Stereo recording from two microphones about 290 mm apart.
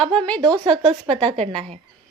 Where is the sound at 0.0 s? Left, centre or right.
Centre.